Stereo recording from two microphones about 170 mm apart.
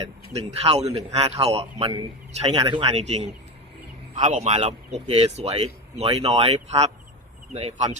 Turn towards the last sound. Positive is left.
turn(degrees=-35)  # may be behind; listen again after turning